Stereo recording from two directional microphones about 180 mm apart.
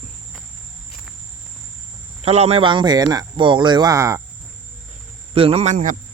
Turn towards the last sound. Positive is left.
turn(degrees=-45)  # may be behind; listen again after turning